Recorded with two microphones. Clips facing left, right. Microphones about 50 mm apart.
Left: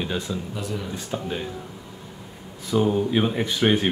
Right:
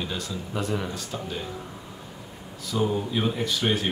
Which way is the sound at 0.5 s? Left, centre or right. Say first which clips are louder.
Right 2 dB; right.